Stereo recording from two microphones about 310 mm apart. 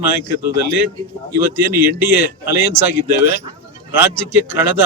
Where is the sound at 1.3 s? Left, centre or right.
Centre.